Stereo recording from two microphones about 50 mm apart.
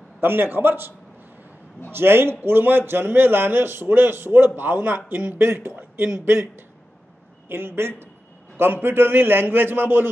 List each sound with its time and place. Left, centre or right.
0.2 s a man's voice: right